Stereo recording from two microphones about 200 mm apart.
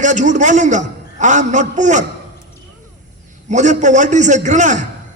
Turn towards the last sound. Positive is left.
turn(degrees=-35)  # may be behind; listen again after turning